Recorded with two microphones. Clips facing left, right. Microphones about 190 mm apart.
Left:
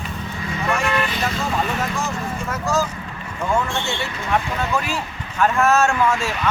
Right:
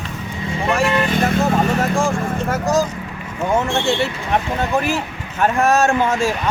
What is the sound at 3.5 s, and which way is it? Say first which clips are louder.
Speech: right 5 dB; 25° right (ahead or behind).